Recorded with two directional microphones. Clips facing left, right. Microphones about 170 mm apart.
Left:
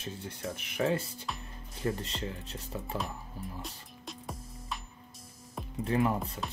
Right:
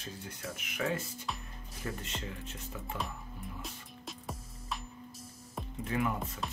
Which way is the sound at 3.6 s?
Centre (ahead or behind).